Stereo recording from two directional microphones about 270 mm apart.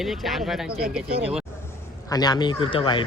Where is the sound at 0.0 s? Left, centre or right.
Centre.